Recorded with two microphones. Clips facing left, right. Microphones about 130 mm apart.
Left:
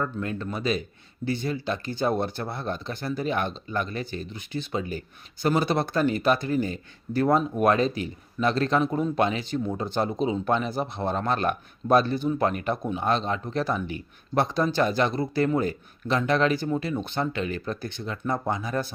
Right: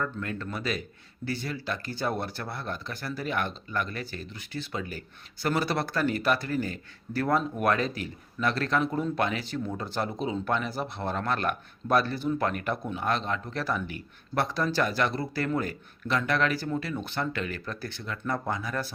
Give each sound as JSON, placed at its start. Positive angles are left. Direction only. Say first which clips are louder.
{"t": 0.0, "sound": "speech", "louder": "left 3 dB", "side_deg": 20}